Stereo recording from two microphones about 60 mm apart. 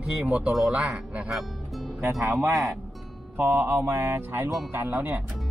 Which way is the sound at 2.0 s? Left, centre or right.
Right.